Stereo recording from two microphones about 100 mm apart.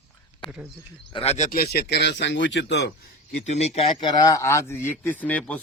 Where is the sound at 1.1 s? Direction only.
60° left (ahead or behind).